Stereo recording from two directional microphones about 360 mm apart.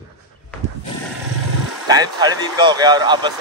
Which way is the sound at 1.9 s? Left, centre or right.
Centre.